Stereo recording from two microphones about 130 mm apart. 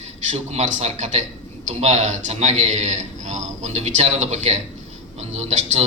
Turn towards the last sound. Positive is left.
turn(degrees=-60)  # may be behind; listen again after turning